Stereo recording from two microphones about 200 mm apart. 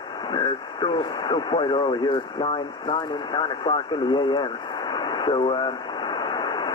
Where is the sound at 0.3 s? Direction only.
20° left (ahead or behind).